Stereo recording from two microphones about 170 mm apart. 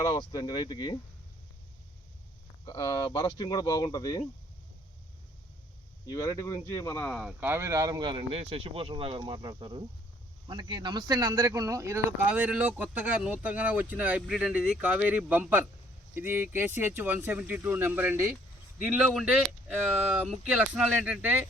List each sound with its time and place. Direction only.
0.0 s speech: 25° left (ahead or behind)
2.6 s speech: 25° left (ahead or behind)
6.1 s speech: 20° left (ahead or behind); by 21.4 s 10° right (ahead or behind)